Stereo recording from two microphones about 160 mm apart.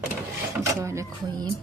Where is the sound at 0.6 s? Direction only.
20° right (ahead or behind).